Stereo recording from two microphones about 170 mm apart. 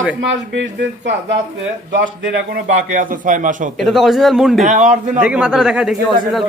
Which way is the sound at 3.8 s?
Centre (ahead or behind).